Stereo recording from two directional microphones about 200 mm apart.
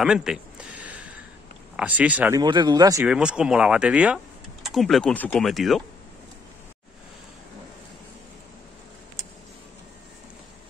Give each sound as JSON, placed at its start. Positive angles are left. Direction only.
{"t": 0.0, "sound": "a sound", "side_deg": -5}
{"t": 1.8, "sound": "speech", "side_deg": -5}
{"t": 2.4, "sound": "speech", "side_deg": -20}
{"t": 3.1, "sound": "speech", "side_deg": -5}